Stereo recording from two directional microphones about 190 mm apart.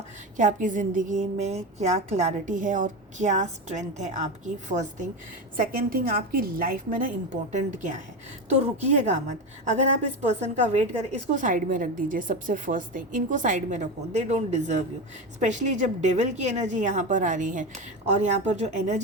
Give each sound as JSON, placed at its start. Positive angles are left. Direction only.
{"t": 0.3, "sound": "a woman's voice", "side_deg": -40}
{"t": 10.2, "sound": "a woman's voice", "side_deg": -35}